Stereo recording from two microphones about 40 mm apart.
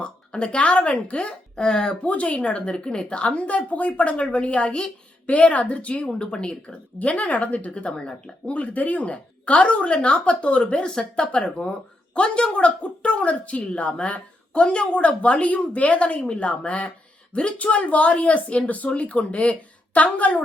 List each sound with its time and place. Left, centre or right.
0.0 s speech: left
1.5 s speech: left
6.1 s speech: left
7.0 s speech: left
8.5 s speech: left